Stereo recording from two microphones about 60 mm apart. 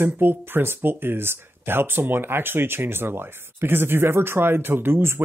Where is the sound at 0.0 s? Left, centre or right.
Right.